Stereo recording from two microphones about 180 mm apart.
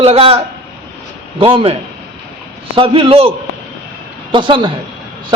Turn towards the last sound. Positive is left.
turn(degrees=-25)  # may be behind; listen again after turning